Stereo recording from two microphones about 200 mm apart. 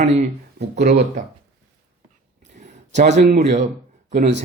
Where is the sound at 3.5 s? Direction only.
35° right (ahead or behind).